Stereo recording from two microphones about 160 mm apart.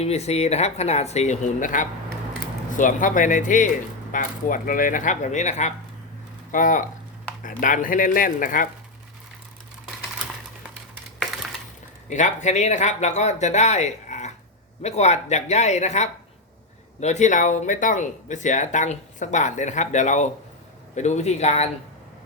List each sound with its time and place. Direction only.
0.0 s speech: 40° left (ahead or behind); by 8.6 s 60° left (ahead or behind)
12.0 s speech: 50° left (ahead or behind)